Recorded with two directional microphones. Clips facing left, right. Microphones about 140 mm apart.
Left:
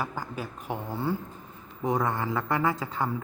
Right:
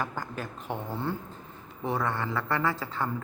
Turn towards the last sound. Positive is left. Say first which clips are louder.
# left 2 dB
turn(degrees=15)  # may be behind; listen again after turning